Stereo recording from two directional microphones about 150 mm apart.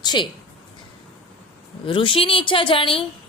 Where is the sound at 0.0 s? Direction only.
30° left (ahead or behind).